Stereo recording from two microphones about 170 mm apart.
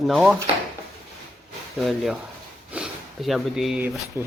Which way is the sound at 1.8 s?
Centre (ahead or behind).